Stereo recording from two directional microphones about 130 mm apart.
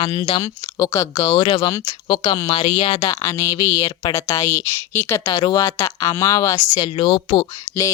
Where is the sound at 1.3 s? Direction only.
40° left (ahead or behind).